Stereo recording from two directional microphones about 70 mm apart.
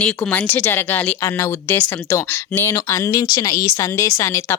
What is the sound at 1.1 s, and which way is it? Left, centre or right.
Speech, left.